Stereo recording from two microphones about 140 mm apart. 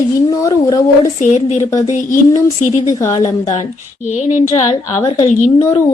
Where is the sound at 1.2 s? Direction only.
60° left (ahead or behind).